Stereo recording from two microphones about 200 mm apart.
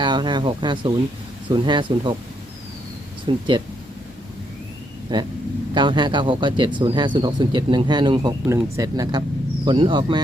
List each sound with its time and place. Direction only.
0.0 s speech: 25° right (ahead or behind)
3.2 s speech: 25° right (ahead or behind)
5.1 s speech: 20° right (ahead or behind)